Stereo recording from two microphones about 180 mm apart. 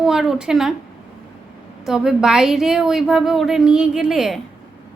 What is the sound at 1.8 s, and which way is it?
A woman's voice, 5° right (ahead or behind).